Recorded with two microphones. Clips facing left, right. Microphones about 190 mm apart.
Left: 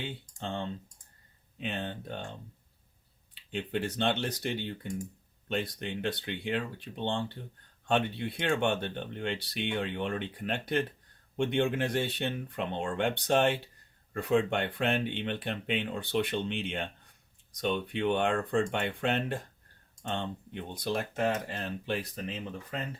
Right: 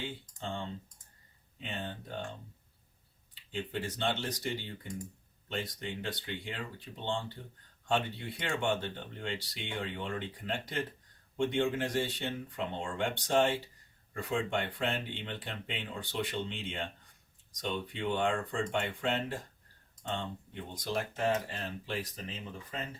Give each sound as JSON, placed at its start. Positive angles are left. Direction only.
{"t": 0.3, "sound": "speech", "side_deg": 60}
{"t": 1.6, "sound": "speech", "side_deg": 65}
{"t": 3.5, "sound": "speech", "side_deg": 65}